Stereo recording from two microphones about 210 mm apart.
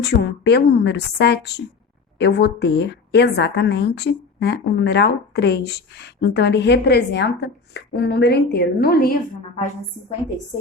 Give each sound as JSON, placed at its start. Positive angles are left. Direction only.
{"t": 0.0, "sound": "a woman's voice", "side_deg": 55}